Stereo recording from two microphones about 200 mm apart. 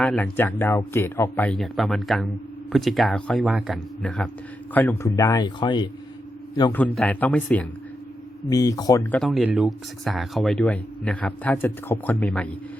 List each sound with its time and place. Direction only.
0.0 s speech: 5° left (ahead or behind); by 5.9 s 20° left (ahead or behind)
6.7 s speech: 5° left (ahead or behind)
9.1 s speech: centre (ahead or behind)